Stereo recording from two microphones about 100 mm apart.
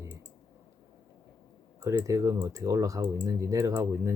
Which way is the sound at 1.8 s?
30° right (ahead or behind).